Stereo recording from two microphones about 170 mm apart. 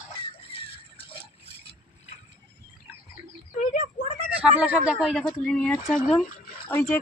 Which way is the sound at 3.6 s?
50° left (ahead or behind).